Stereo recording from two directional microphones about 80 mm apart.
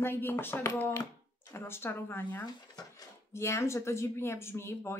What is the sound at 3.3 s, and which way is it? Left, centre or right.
A woman's voice, left.